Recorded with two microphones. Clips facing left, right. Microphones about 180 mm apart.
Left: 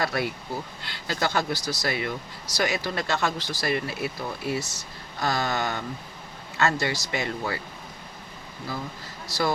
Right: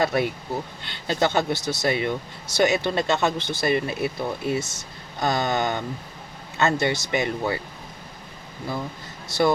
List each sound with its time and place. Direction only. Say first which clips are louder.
0.0 s speech: right 5 dB; 20° right (ahead or behind)